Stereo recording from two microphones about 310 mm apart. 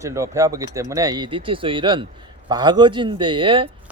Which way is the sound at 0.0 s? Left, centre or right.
Centre.